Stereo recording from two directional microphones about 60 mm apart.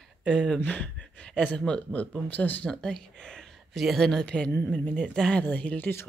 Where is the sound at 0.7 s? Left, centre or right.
Left.